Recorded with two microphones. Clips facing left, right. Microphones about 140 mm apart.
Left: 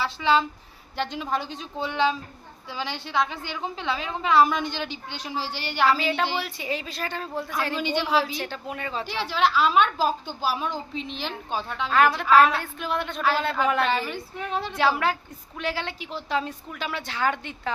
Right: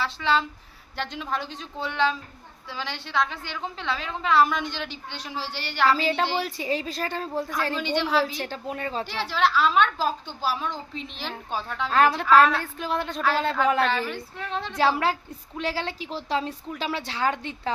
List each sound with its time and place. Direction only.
0.0 s a woman's voice: 5° left (ahead or behind)
6.0 s a woman's voice: 35° right (ahead or behind)
7.8 s a woman's voice: 5° left (ahead or behind)
8.4 s a woman's voice: 35° right (ahead or behind)
9.0 s a woman's voice: centre (ahead or behind)
11.9 s a woman's voice: 35° right (ahead or behind)
13.8 s a woman's voice: 5° left (ahead or behind)
14.8 s a woman's voice: 30° right (ahead or behind)